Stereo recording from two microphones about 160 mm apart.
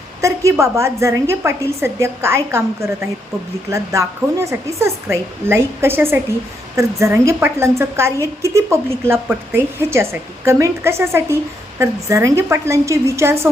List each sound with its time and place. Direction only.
0.2 s a woman's voice: 20° right (ahead or behind)